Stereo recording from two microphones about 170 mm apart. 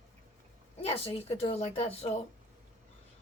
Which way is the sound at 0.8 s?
35° left (ahead or behind).